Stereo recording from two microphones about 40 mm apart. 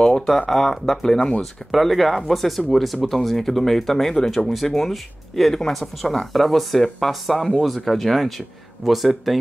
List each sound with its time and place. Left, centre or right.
0.5 s speech: centre
1.4 s speech: centre